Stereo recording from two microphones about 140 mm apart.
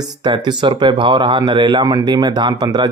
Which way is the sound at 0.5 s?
30° right (ahead or behind).